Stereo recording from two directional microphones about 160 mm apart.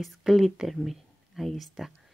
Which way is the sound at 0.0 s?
Centre (ahead or behind).